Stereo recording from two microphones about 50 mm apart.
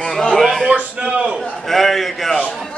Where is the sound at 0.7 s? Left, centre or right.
Right.